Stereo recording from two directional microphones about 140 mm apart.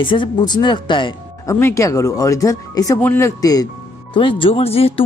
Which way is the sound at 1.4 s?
20° left (ahead or behind).